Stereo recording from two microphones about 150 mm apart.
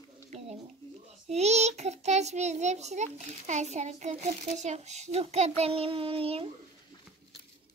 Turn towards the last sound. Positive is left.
turn(degrees=-40)  # may be behind; listen again after turning